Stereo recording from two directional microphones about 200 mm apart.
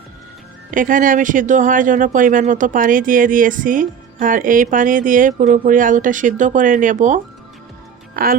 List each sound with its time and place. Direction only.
0.7 s speech: 40° right (ahead or behind)